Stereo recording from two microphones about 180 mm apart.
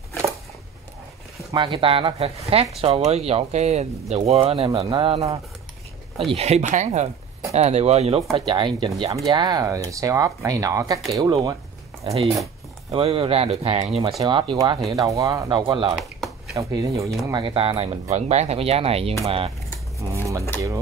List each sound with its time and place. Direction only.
1.5 s speech: 25° right (ahead or behind)
6.3 s speech: 35° right (ahead or behind)
12.0 s speech: 35° right (ahead or behind)
16.0 s a sound: centre (ahead or behind)
16.5 s speech: 15° right (ahead or behind)
20.0 s speech: 15° right (ahead or behind)